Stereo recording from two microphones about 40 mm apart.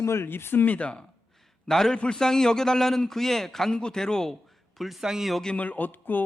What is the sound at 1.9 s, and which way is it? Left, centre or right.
A man's voice, left.